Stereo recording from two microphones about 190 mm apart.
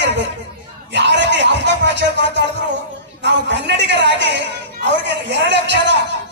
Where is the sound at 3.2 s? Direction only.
65° right (ahead or behind).